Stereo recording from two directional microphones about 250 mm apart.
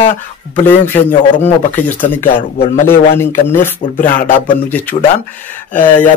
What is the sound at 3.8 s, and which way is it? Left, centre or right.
Speech, left.